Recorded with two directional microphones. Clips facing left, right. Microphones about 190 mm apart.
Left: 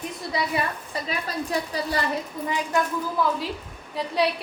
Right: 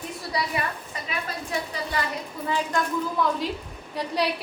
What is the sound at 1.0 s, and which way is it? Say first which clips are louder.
Speech: left 3 dB; 35° left (ahead or behind).